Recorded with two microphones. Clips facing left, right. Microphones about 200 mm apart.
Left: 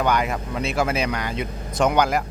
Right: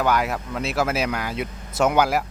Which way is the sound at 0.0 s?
Centre (ahead or behind).